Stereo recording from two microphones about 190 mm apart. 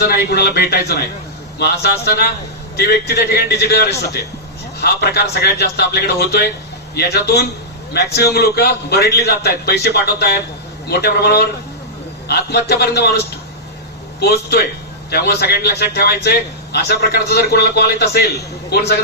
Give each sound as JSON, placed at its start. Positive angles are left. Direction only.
{"t": 0.0, "sound": "a man's voice", "side_deg": 60}